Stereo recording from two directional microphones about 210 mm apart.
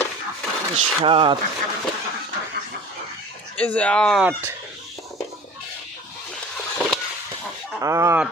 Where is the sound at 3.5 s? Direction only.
5° left (ahead or behind).